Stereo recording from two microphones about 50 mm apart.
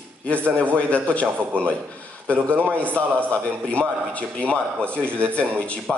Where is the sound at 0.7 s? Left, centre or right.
Left.